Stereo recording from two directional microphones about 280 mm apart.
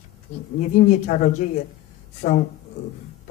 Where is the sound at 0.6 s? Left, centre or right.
Left.